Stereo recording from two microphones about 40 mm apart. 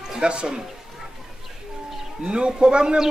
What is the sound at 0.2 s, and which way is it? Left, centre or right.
Speech, right.